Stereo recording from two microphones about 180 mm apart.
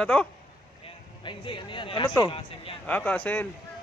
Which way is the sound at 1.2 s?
25° left (ahead or behind).